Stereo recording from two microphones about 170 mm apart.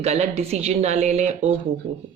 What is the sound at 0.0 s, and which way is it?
Speech, 40° right (ahead or behind).